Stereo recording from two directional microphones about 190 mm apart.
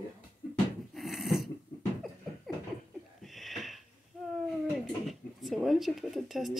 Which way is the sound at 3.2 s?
Centre (ahead or behind).